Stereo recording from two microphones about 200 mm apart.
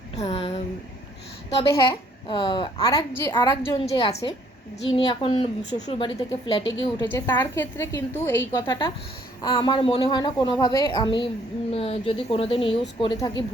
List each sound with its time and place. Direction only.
0.2 s speech: 30° left (ahead or behind)
1.7 s a woman's voice: 20° left (ahead or behind)
3.8 s a woman's voice: 30° left (ahead or behind)
7.1 s a woman's voice: 10° left (ahead or behind)